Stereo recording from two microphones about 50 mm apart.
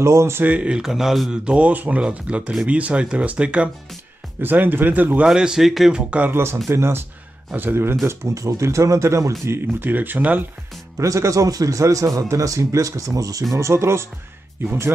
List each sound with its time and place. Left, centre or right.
0.0 s speech: right
0.6 s speech: centre
0.8 s speech: centre
1.3 s speech: right
4.4 s speech: right
5.2 s speech: centre
6.0 s speech: right
6.3 s speech: right
8.0 s speech: right
9.5 s speech: right
11.0 s a man's voice: right
13.6 s speech: right
14.7 s speech: right